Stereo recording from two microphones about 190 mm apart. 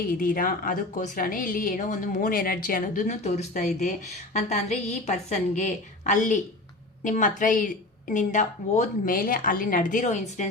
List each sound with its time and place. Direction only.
0.1 s a woman's voice: 45° left (ahead or behind)